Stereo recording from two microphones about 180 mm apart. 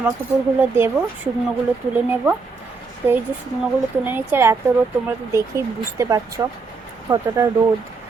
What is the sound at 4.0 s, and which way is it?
A woman's voice, 10° right (ahead or behind).